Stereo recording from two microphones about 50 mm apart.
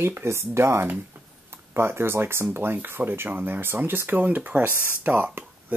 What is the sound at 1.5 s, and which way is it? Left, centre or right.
Speech, right.